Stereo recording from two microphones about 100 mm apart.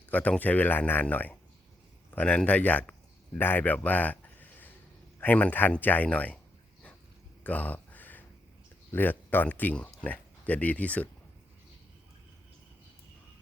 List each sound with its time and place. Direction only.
0.1 s speech: 15° left (ahead or behind)
7.4 s a sound: 15° left (ahead or behind)
8.9 s speech: 20° left (ahead or behind)